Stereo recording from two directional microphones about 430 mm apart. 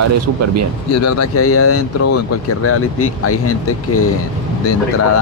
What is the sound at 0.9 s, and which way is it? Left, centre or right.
Speech, left.